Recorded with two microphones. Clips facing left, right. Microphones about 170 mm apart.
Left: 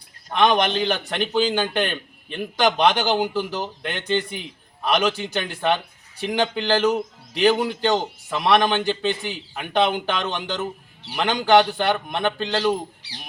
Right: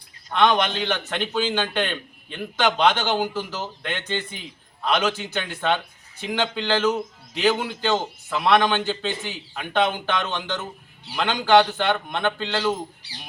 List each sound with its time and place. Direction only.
0.3 s a man's voice: 15° left (ahead or behind)